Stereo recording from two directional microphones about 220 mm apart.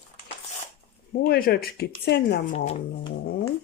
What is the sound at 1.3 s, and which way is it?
Speech, 45° left (ahead or behind).